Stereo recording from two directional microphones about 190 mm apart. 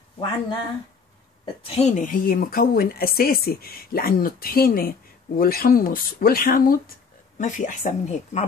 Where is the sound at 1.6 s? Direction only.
35° left (ahead or behind).